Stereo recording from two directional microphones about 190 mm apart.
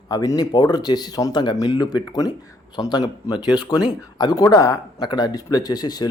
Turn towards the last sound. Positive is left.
turn(degrees=20)  # may be behind; listen again after turning